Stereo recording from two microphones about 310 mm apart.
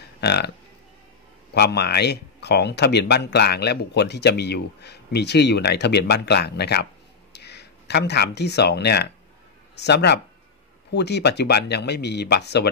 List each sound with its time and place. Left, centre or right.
0.2 s speech: left
1.5 s speech: left